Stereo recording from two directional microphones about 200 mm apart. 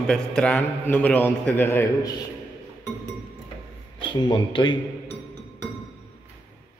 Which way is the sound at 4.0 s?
25° left (ahead or behind).